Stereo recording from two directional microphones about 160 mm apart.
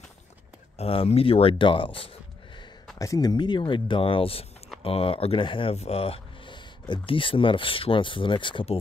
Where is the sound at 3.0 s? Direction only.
20° left (ahead or behind).